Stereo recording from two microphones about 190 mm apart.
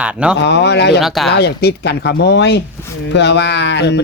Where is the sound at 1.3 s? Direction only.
60° left (ahead or behind).